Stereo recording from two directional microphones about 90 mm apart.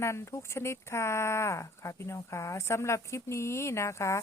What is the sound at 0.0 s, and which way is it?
Speech, 30° left (ahead or behind).